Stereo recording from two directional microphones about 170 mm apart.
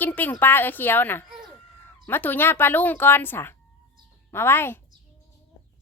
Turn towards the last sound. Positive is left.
turn(degrees=15)  # may be behind; listen again after turning